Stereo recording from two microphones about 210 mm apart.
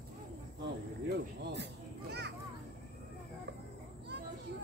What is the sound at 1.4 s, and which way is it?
Children playing, 55° right (ahead or behind).